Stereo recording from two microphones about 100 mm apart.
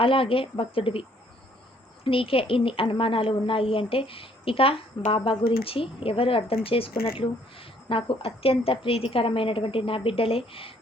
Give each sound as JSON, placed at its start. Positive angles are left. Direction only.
{"t": 0.0, "sound": "a woman's voice", "side_deg": 65}
{"t": 2.0, "sound": "a woman's voice", "side_deg": 65}